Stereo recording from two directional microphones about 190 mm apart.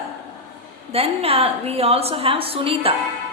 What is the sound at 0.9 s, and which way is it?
A woman's voice, 30° right (ahead or behind).